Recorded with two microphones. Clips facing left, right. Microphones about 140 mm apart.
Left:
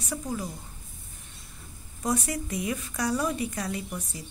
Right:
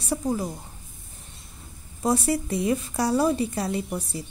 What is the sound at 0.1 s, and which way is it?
Speech, 30° right (ahead or behind).